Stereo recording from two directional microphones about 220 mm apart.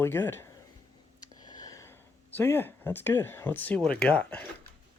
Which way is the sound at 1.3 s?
15° left (ahead or behind).